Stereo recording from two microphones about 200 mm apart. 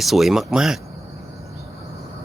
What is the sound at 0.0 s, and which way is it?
Speech, centre (ahead or behind).